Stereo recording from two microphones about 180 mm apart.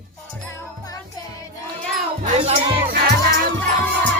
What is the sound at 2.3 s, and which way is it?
Music, 35° right (ahead or behind).